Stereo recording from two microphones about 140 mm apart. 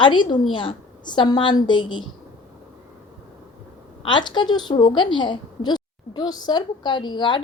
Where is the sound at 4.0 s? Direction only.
35° left (ahead or behind).